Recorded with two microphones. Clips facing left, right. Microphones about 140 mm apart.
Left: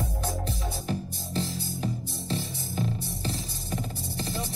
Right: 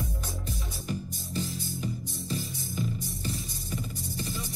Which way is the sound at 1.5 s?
35° left (ahead or behind).